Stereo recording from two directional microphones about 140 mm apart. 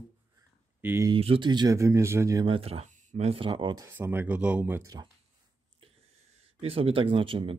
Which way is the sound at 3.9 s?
15° right (ahead or behind).